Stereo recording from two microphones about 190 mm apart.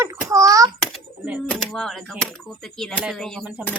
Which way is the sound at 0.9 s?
5° right (ahead or behind).